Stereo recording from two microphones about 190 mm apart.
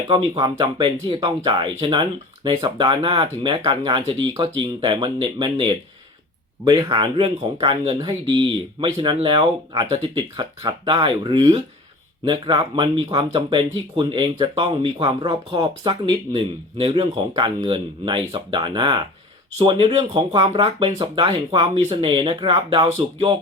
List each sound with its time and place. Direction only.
0.1 s speech: 25° right (ahead or behind)